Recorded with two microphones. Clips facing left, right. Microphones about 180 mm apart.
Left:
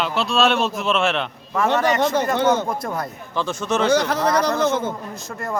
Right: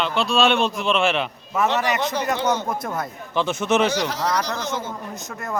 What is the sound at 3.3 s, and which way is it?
Speech, 20° right (ahead or behind).